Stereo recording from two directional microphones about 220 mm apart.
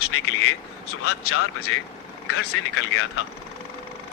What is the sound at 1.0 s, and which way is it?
Speech, 75° left (ahead or behind).